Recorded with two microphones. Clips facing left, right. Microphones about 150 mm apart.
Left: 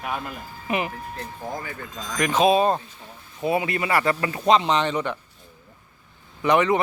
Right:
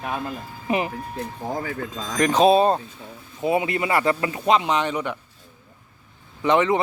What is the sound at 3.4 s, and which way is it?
Speech, 20° right (ahead or behind).